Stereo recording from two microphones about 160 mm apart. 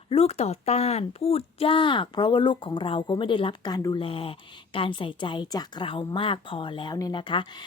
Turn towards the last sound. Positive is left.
turn(degrees=30)  # may be behind; listen again after turning